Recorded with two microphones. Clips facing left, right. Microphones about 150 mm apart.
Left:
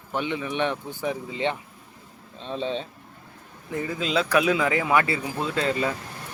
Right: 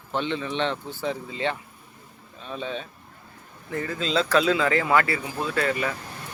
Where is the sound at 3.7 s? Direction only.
15° left (ahead or behind).